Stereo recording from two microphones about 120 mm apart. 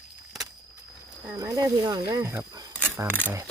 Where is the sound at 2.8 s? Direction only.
20° right (ahead or behind).